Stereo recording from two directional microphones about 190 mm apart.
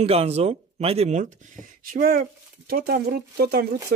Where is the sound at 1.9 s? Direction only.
50° right (ahead or behind).